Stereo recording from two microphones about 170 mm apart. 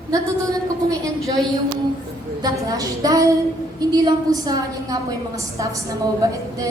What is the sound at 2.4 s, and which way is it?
A woman's voice, 20° right (ahead or behind).